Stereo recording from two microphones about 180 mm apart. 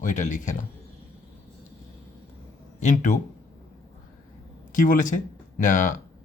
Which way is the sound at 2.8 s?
45° left (ahead or behind).